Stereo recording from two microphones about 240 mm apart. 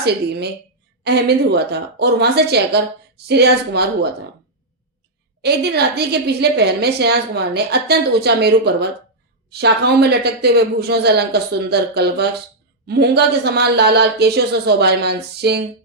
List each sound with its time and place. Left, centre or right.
0.0 s speech: right
5.4 s speech: right